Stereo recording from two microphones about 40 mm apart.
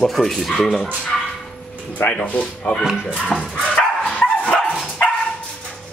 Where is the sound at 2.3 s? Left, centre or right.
Left.